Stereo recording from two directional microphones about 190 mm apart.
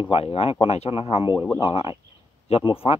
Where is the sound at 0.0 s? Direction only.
30° left (ahead or behind).